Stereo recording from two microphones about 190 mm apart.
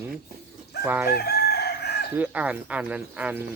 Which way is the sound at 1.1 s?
55° left (ahead or behind).